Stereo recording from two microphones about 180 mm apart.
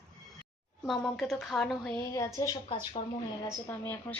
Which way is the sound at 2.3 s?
20° left (ahead or behind).